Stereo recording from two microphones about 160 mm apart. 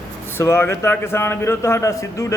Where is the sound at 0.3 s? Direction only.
15° left (ahead or behind).